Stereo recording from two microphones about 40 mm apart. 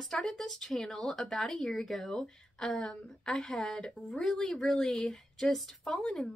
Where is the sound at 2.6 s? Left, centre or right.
Centre.